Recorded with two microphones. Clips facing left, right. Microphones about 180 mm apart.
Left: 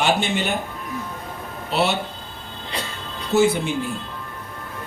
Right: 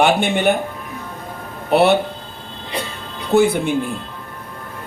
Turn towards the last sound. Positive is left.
turn(degrees=-60)  # may be behind; listen again after turning